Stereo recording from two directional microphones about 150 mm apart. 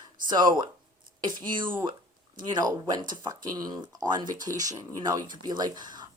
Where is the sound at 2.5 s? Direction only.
25° right (ahead or behind).